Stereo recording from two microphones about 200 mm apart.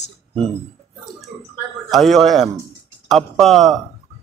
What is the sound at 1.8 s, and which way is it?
Speech, centre (ahead or behind).